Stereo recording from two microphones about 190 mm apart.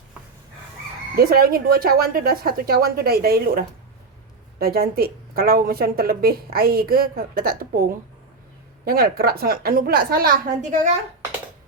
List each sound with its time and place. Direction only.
1.1 s a woman's voice: 50° right (ahead or behind)
4.6 s a woman's voice: 50° right (ahead or behind)